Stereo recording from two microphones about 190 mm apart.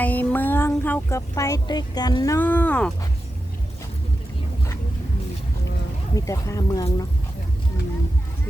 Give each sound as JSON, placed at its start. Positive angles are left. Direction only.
{"t": 0.0, "sound": "speech", "side_deg": 10}
{"t": 6.1, "sound": "speech", "side_deg": 15}